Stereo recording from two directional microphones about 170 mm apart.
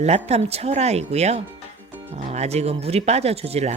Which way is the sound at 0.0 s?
40° right (ahead or behind).